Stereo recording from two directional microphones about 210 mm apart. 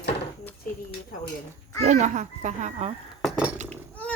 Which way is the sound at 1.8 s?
35° right (ahead or behind).